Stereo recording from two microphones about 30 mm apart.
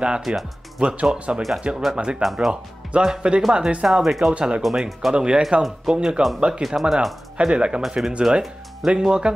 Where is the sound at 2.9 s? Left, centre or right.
Right.